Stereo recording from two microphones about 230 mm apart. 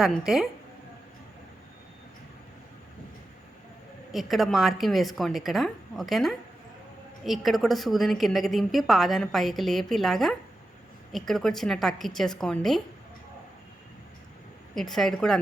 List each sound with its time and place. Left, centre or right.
0.0 s a woman's voice: centre
4.1 s a woman's voice: centre
14.8 s a woman's voice: centre